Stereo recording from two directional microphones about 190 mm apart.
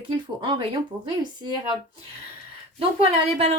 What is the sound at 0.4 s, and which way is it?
Speech, 25° right (ahead or behind).